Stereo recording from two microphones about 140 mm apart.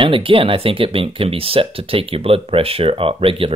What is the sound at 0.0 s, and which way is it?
Speech, 40° right (ahead or behind).